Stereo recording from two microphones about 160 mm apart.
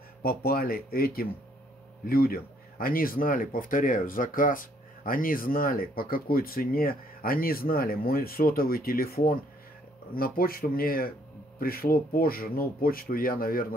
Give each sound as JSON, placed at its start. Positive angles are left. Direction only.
{"t": 0.2, "sound": "speech", "side_deg": 70}